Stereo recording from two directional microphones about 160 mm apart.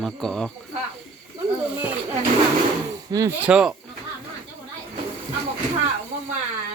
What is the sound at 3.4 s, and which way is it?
Speech, 5° right (ahead or behind).